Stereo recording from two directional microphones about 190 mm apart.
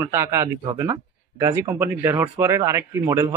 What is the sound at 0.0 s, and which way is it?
Speech, 15° right (ahead or behind).